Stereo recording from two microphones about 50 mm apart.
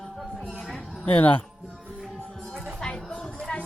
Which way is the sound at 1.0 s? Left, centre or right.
Left.